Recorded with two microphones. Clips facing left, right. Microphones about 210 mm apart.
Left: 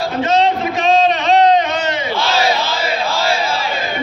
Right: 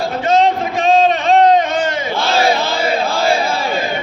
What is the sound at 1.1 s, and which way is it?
Battle cry, 50° right (ahead or behind).